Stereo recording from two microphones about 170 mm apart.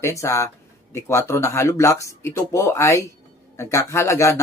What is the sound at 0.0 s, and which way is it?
Speech, 15° left (ahead or behind).